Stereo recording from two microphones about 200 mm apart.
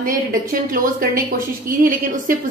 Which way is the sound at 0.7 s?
45° right (ahead or behind).